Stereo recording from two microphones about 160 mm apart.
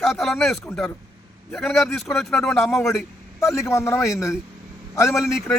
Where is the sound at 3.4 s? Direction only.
20° left (ahead or behind).